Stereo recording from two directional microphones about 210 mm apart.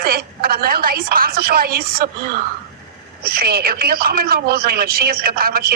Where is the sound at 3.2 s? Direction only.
45° right (ahead or behind).